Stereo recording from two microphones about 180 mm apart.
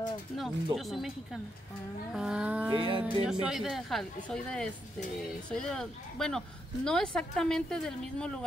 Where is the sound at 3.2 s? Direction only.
Centre (ahead or behind).